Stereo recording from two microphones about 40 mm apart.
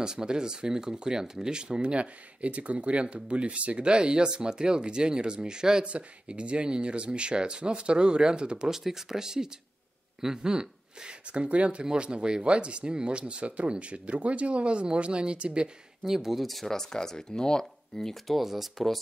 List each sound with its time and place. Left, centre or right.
0.0 s speech: centre
8.6 s speech: centre; by 15.7 s right
16.0 s speech: centre